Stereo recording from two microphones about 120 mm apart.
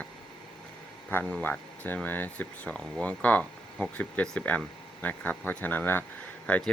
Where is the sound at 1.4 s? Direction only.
15° left (ahead or behind).